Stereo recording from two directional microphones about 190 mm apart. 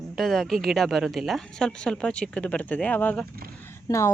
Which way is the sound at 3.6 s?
15° left (ahead or behind).